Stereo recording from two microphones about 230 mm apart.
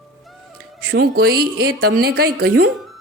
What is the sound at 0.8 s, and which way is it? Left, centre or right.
Speech, right.